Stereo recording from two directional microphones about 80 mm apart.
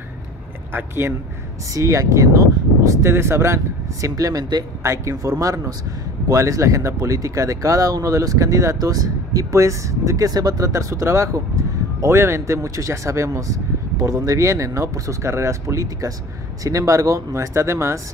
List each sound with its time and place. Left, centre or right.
0.7 s speech: right
1.7 s speech: right
4.1 s speech: right
4.8 s speech: right